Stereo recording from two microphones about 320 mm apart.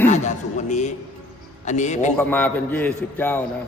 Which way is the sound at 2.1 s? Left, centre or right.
Centre.